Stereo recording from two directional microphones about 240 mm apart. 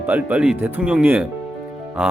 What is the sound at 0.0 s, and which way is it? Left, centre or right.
Speech, centre.